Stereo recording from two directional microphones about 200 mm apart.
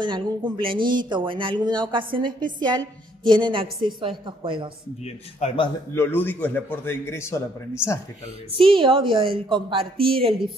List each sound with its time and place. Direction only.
0.0 s speech: 25° right (ahead or behind)
5.0 s speech: 30° left (ahead or behind)
5.9 s a man's voice: 10° left (ahead or behind)
8.5 s speech: 25° right (ahead or behind)